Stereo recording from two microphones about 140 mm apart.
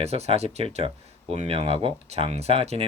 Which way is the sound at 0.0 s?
50° right (ahead or behind).